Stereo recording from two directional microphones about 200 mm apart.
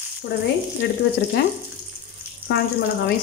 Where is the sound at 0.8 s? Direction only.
55° left (ahead or behind).